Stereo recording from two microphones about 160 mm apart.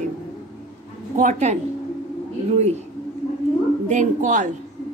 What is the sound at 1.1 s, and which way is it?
Speech, 50° right (ahead or behind).